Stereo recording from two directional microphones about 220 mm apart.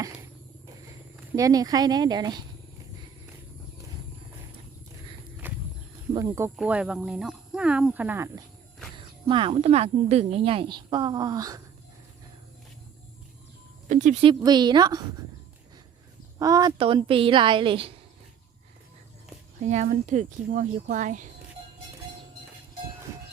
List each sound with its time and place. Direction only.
1.3 s speech: 15° right (ahead or behind)
5.5 s walk: 10° right (ahead or behind)
6.1 s speech: 15° right (ahead or behind)
9.0 s speech: 20° right (ahead or behind)
13.8 s speech: 35° right (ahead or behind)
14.4 s speech: 20° right (ahead or behind)
16.4 s speech: 15° right (ahead or behind)
19.6 s speech: 35° right (ahead or behind)